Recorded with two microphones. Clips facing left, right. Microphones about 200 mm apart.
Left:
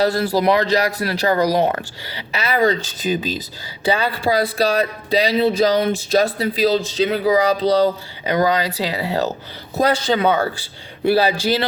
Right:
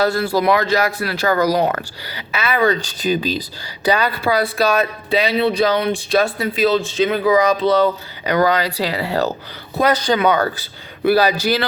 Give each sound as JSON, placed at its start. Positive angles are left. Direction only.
{"t": 0.0, "sound": "speech", "side_deg": 35}
{"t": 1.3, "sound": "speech", "side_deg": 25}
{"t": 2.8, "sound": "a man's voice", "side_deg": 20}
{"t": 8.3, "sound": "a man's voice", "side_deg": 20}